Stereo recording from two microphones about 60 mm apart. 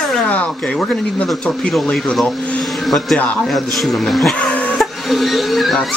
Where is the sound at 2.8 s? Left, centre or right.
Centre.